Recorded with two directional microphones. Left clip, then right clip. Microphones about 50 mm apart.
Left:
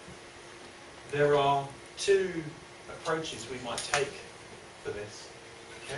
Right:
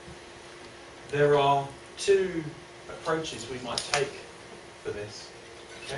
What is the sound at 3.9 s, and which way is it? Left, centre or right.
Speech, right.